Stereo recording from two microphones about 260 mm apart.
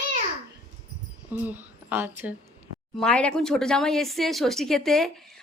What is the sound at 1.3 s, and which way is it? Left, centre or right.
A woman's voice, centre.